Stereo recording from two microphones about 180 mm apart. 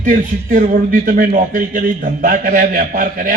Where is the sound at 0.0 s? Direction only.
50° right (ahead or behind).